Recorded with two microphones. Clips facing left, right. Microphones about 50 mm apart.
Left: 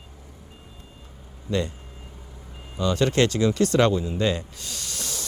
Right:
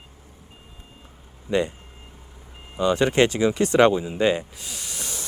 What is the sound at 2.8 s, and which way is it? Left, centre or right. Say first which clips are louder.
Speech: right 2 dB; centre.